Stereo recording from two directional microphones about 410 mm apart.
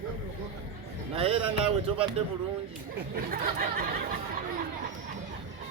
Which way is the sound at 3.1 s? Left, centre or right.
Right.